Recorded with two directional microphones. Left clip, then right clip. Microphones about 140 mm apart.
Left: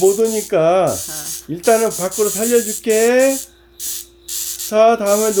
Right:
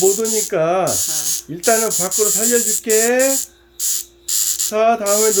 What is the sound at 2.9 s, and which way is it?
Speech, 45° left (ahead or behind).